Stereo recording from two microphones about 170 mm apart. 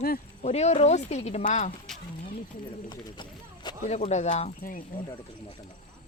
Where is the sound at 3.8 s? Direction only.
40° left (ahead or behind).